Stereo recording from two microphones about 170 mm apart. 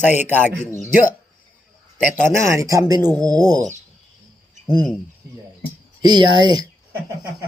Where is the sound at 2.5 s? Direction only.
20° right (ahead or behind).